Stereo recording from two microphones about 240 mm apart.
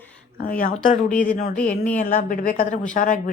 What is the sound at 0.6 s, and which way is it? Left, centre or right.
Speech, left.